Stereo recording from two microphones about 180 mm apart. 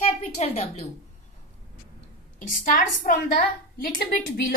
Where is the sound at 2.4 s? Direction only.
45° left (ahead or behind).